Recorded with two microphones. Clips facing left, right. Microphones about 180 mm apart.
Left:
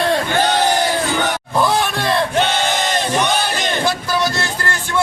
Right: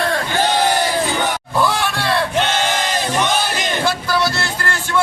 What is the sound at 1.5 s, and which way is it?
Music, 20° left (ahead or behind).